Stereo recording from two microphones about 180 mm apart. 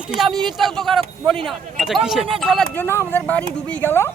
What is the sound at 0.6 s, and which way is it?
Speech, centre (ahead or behind).